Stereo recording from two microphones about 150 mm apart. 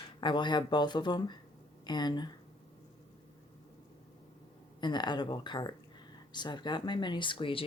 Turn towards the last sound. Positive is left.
turn(degrees=35)  # may be behind; listen again after turning